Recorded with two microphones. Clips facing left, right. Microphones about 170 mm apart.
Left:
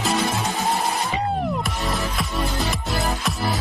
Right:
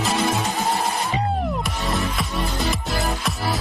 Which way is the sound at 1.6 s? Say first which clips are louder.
Right 1 dB; centre (ahead or behind).